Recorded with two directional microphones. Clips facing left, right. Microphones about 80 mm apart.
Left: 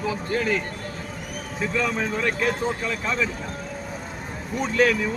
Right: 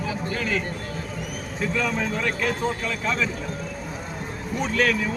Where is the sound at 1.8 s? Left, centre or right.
Centre.